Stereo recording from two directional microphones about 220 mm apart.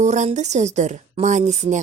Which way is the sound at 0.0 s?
30° right (ahead or behind).